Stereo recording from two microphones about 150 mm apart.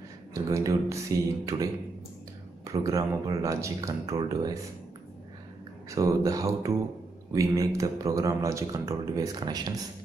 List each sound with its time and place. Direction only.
0.3 s speech: 20° right (ahead or behind)
5.9 s speech: 20° right (ahead or behind)